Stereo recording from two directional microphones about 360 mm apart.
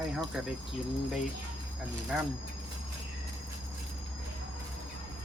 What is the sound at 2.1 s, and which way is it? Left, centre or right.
Speech, centre.